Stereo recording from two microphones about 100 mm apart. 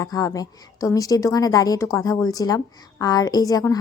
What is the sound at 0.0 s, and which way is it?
Speech, 35° left (ahead or behind).